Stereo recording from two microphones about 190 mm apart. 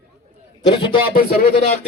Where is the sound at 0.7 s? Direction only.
25° left (ahead or behind).